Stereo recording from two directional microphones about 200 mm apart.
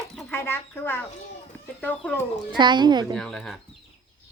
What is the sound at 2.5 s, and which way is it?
Speech, 20° right (ahead or behind).